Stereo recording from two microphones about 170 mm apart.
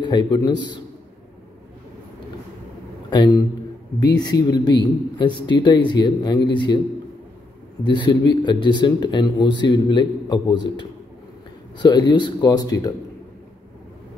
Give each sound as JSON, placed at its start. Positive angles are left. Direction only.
{"t": 0.0, "sound": "speech", "side_deg": 25}
{"t": 3.1, "sound": "a man's voice", "side_deg": 25}
{"t": 7.8, "sound": "speech", "side_deg": 25}
{"t": 11.8, "sound": "speech", "side_deg": 25}